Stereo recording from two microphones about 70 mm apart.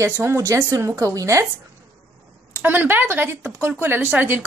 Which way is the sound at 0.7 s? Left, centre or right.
Right.